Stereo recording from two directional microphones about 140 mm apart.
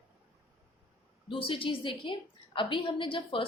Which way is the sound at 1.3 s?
40° left (ahead or behind).